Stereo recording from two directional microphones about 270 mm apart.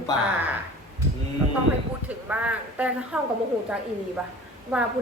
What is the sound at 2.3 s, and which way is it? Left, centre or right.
Speech, centre.